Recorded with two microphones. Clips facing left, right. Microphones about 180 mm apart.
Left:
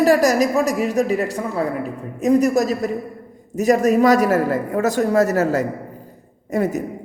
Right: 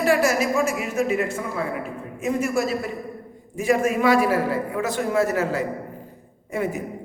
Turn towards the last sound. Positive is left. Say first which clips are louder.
# left 5 dB
turn(degrees=40)  # may be behind; listen again after turning